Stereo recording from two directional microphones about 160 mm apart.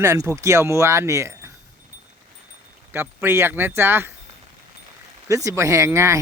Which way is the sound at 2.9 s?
15° right (ahead or behind).